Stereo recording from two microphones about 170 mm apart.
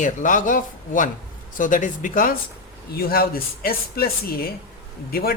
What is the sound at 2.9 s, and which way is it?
Speech, 65° left (ahead or behind).